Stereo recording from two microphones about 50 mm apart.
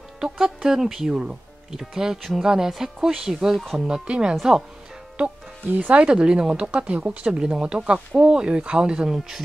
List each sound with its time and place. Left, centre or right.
0.2 s speech: centre
5.7 s speech: right; by 9.4 s centre